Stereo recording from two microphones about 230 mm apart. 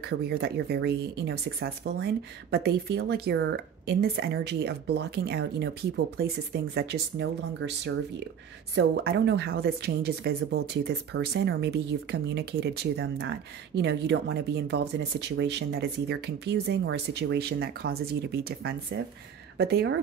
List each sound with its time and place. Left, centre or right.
0.0 s speech: right